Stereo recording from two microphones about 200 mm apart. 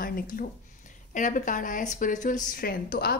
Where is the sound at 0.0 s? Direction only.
45° left (ahead or behind).